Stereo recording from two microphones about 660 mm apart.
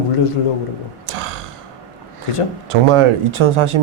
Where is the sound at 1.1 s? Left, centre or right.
Right.